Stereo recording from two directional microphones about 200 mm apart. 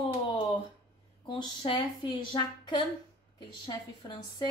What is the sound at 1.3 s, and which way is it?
A woman's voice, 25° left (ahead or behind).